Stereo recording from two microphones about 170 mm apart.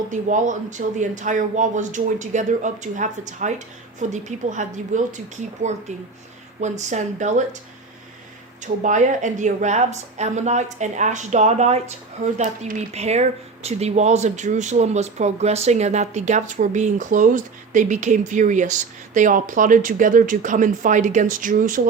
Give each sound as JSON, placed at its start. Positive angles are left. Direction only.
{"t": 0.1, "sound": "a woman's voice", "side_deg": -45}
{"t": 6.6, "sound": "a woman's voice", "side_deg": -45}
{"t": 8.6, "sound": "a woman's voice", "side_deg": -45}